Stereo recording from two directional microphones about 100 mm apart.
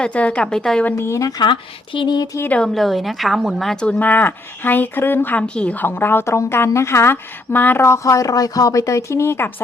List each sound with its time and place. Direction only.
0.0 s a woman's voice: 10° left (ahead or behind)
0.9 s speech: 25° left (ahead or behind)
1.4 s speech: 55° left (ahead or behind)
2.6 s speech: 5° left (ahead or behind); by 9.5 s 25° left (ahead or behind)